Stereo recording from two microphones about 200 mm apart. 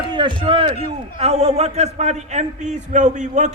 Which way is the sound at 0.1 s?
25° right (ahead or behind).